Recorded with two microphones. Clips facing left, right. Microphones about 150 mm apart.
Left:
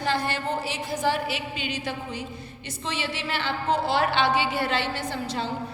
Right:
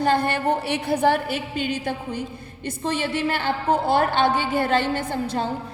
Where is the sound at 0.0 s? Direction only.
55° right (ahead or behind).